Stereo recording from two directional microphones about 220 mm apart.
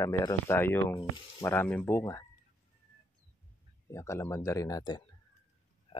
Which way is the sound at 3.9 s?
15° left (ahead or behind).